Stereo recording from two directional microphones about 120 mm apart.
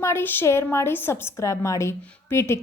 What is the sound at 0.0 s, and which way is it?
A woman's voice, 20° left (ahead or behind).